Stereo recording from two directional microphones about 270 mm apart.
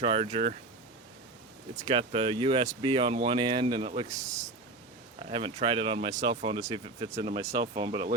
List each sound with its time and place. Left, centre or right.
0.0 s speech: centre
1.7 s speech: centre
5.2 s speech: right